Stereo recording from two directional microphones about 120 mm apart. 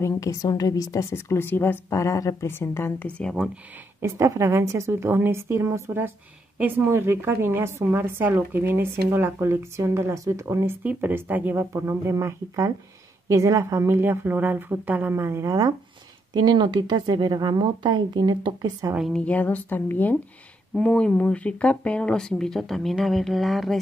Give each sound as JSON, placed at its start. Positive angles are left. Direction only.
{"t": 0.0, "sound": "a woman's voice", "side_deg": 25}
{"t": 4.0, "sound": "a woman's voice", "side_deg": -25}
{"t": 19.1, "sound": "speech", "side_deg": 10}